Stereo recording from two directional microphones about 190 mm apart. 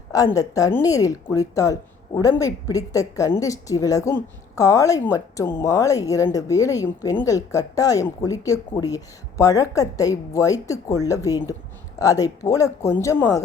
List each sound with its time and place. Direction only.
0.1 s a woman's voice: 20° left (ahead or behind)